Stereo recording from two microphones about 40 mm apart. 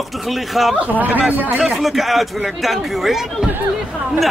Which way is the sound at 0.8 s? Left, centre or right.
Right.